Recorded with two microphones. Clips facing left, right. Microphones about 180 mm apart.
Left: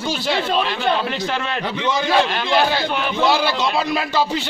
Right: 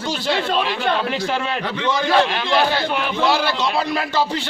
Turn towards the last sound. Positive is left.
turn(degrees=10)  # may be behind; listen again after turning